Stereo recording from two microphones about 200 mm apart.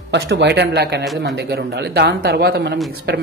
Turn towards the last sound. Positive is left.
turn(degrees=-50)  # may be behind; listen again after turning